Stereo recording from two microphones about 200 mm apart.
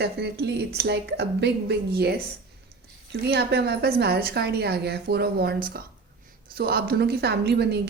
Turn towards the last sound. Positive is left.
turn(degrees=-55)  # may be behind; listen again after turning